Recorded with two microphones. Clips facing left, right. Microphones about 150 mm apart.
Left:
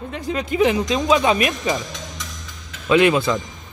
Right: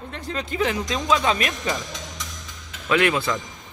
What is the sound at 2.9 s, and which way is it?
Speech, 20° left (ahead or behind).